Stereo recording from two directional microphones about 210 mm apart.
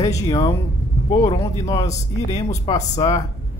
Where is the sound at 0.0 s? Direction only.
20° left (ahead or behind).